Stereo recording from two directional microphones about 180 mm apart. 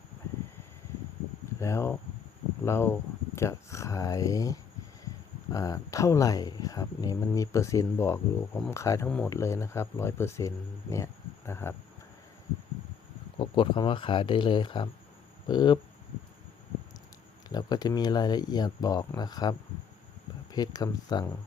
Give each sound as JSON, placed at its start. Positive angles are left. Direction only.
{"t": 1.6, "sound": "speech", "side_deg": 15}
{"t": 9.0, "sound": "speech", "side_deg": 5}
{"t": 9.3, "sound": "speech", "side_deg": 15}
{"t": 10.9, "sound": "a sound", "side_deg": 15}
{"t": 13.4, "sound": "speech", "side_deg": 25}
{"t": 17.5, "sound": "speech", "side_deg": 20}